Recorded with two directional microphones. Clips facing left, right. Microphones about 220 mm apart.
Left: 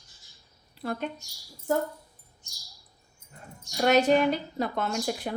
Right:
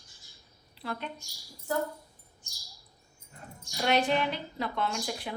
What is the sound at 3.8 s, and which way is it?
A woman's voice, 45° left (ahead or behind).